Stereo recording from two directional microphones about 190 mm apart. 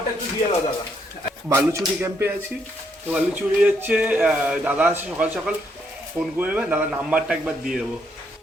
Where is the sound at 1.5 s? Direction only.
15° right (ahead or behind).